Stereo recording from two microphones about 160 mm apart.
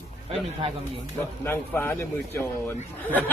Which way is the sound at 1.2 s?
15° left (ahead or behind).